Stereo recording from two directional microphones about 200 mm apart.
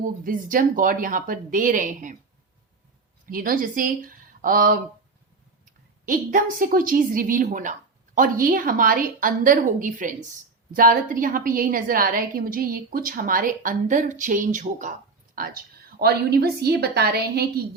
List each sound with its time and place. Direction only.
0.0 s a woman's voice: 45° right (ahead or behind)
3.2 s speech: 45° right (ahead or behind)
6.1 s a woman's voice: 45° right (ahead or behind)